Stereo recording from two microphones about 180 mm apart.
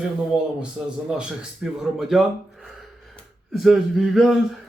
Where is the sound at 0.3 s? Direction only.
25° left (ahead or behind).